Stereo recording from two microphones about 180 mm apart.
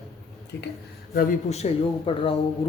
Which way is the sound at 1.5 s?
35° left (ahead or behind).